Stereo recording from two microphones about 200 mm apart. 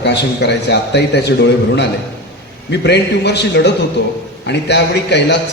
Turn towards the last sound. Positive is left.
turn(degrees=60)  # may be behind; listen again after turning